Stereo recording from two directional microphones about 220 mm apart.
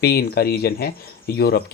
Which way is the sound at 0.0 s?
45° left (ahead or behind).